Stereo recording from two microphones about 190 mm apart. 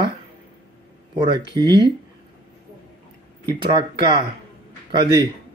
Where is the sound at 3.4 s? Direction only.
25° right (ahead or behind).